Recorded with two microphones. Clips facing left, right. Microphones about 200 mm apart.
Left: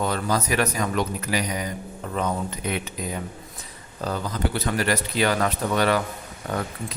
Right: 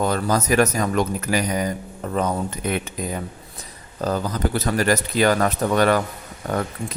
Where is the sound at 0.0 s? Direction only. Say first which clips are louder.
Right 3 dB; 45° right (ahead or behind).